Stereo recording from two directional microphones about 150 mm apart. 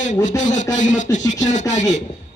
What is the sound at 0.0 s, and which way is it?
Speech, 55° left (ahead or behind).